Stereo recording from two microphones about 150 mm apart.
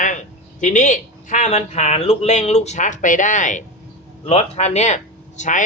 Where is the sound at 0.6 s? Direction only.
55° left (ahead or behind).